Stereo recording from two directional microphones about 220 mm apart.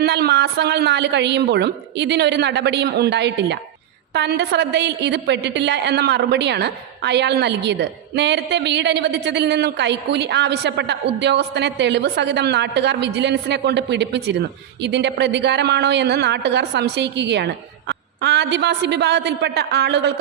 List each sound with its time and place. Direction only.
0.0 s a woman's voice: 50° right (ahead or behind)